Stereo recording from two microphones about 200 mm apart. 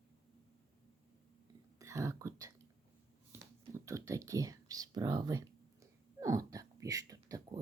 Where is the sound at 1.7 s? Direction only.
15° right (ahead or behind).